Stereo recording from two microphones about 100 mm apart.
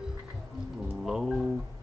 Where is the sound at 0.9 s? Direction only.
5° right (ahead or behind).